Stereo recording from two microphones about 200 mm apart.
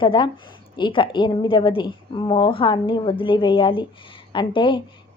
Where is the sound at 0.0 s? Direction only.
25° left (ahead or behind).